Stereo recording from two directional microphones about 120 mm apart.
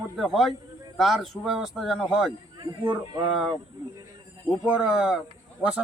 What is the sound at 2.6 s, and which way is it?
Speech, 40° right (ahead or behind).